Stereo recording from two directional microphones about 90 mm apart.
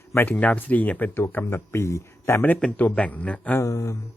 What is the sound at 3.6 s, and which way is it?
Speech, 35° left (ahead or behind).